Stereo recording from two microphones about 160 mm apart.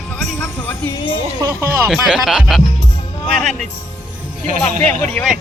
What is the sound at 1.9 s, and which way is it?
Speech, centre (ahead or behind).